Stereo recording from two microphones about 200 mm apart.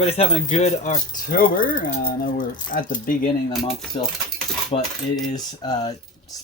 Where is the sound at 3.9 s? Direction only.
30° left (ahead or behind).